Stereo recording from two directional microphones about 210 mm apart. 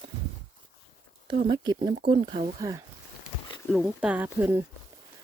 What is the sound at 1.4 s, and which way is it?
Speech, 20° right (ahead or behind).